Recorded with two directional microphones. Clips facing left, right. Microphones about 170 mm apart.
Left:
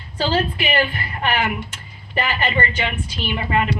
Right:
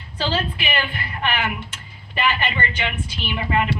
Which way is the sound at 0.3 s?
40° left (ahead or behind).